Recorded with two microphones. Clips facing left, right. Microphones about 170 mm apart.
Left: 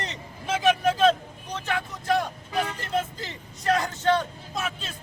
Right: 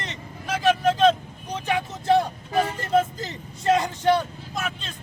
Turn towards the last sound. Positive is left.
turn(degrees=5)  # may be behind; listen again after turning